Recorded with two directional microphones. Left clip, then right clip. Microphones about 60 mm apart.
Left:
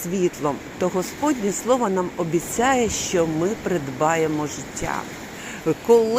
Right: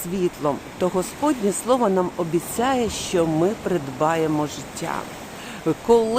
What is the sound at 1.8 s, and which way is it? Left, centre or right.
Speech, right.